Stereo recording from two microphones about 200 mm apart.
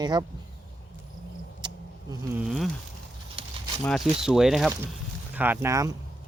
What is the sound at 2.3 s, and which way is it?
Speech, centre (ahead or behind).